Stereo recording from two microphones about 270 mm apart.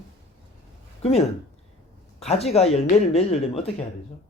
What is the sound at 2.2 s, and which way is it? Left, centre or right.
Speech, left.